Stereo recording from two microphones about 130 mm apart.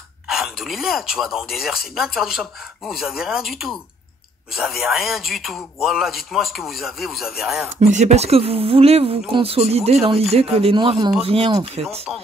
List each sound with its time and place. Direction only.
0.3 s speech: centre (ahead or behind)
7.8 s speech: 60° right (ahead or behind)